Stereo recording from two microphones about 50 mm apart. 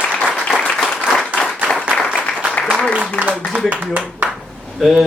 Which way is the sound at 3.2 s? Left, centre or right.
Left.